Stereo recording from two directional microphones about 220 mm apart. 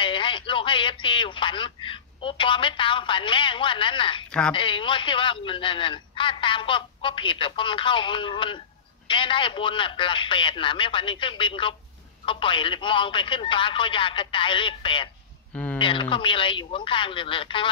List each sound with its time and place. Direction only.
0.0 s speech: 20° left (ahead or behind)
4.3 s a woman's voice: 5° left (ahead or behind)
4.6 s a man's voice: 20° left (ahead or behind)
15.5 s a sound: 5° left (ahead or behind)
15.8 s a man's voice: 20° left (ahead or behind)